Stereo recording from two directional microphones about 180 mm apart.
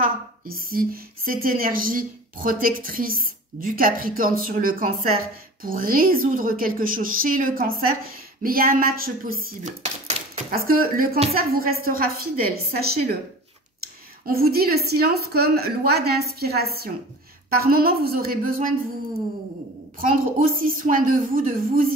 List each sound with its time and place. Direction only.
0.0 s a woman's voice: 55° right (ahead or behind)
10.5 s a woman's voice: 55° right (ahead or behind)
14.2 s a woman's voice: 55° right (ahead or behind)
20.0 s a woman's voice: 50° right (ahead or behind)